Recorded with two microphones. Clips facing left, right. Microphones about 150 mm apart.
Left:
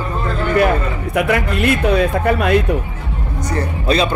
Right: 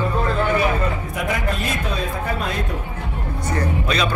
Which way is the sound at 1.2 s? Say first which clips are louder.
Left 9 dB; 70° left (ahead or behind).